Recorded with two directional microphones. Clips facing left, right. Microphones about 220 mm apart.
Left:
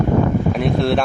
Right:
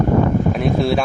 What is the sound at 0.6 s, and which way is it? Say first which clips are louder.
Speech: even; centre (ahead or behind).